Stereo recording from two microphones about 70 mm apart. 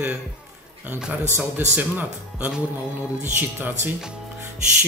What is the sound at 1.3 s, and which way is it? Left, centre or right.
Speech, right.